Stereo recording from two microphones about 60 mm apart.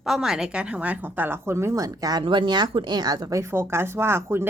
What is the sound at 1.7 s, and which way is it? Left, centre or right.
Speech, right.